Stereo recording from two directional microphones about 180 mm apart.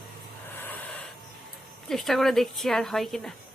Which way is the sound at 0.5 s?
10° left (ahead or behind).